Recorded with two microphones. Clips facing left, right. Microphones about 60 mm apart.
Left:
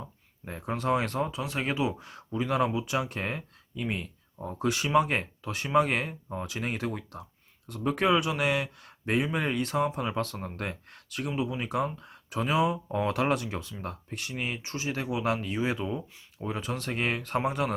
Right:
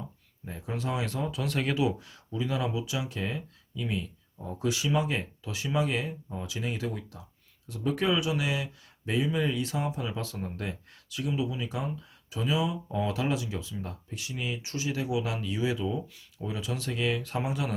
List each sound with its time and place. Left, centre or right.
0.4 s speech: left
1.4 s speech: centre; by 17.7 s left